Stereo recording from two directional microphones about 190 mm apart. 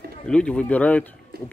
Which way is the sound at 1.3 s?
60° right (ahead or behind).